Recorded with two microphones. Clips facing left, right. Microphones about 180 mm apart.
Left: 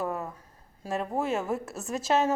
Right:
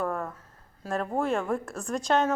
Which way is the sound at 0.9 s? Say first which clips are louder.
Right 1 dB; centre (ahead or behind).